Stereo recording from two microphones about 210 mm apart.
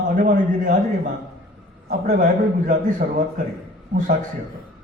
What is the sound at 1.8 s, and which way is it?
Speech, 40° right (ahead or behind).